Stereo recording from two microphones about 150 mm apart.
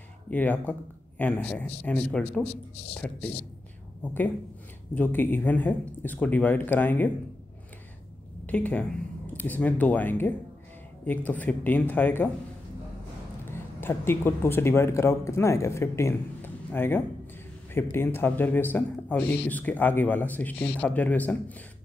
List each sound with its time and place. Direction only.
0.3 s speech: 10° left (ahead or behind)
2.4 s speech: 40° left (ahead or behind)
2.9 s a woman's voice: 10° left (ahead or behind)
8.5 s speech: 10° left (ahead or behind)
13.5 s speech: 15° left (ahead or behind)